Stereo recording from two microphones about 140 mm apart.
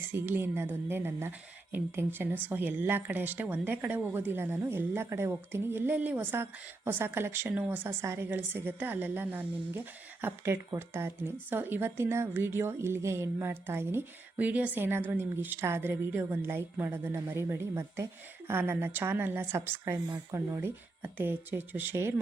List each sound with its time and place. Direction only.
0.1 s a woman's voice: 15° right (ahead or behind)